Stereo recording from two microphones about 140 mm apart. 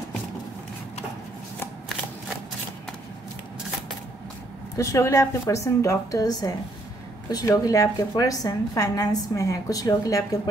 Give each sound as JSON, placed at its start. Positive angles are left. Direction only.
{"t": 4.7, "sound": "a woman's voice", "side_deg": 20}